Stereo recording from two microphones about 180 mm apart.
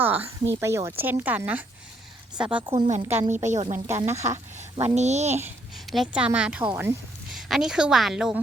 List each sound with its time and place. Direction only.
0.0 s a woman's voice: 10° right (ahead or behind)
2.6 s a woman's voice: 35° right (ahead or behind)
3.8 s a woman's voice: 15° right (ahead or behind)
4.8 s a woman's voice: 40° right (ahead or behind)
5.8 s a woman's voice: centre (ahead or behind)